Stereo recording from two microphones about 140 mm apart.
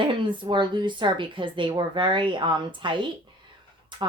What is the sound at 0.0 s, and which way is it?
A woman's voice, 35° right (ahead or behind).